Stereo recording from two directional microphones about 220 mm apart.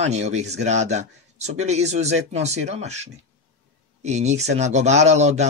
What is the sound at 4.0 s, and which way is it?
Speech, 30° right (ahead or behind).